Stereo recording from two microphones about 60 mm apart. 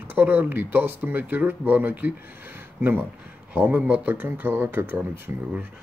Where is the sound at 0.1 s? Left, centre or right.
Right.